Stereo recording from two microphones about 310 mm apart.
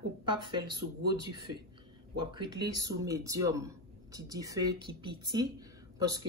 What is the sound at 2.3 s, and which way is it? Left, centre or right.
Speech, centre.